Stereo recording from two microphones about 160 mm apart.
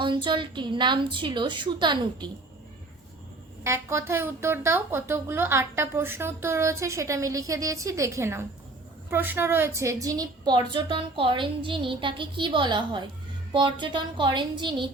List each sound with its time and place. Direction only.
0.0 s a woman's voice: 30° right (ahead or behind)
3.6 s a woman's voice: 15° right (ahead or behind)